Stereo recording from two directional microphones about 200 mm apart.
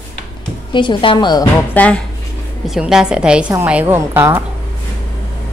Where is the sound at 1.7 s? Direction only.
5° left (ahead or behind).